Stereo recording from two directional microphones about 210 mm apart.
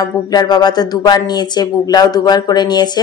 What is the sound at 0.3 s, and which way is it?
Speech, 20° left (ahead or behind).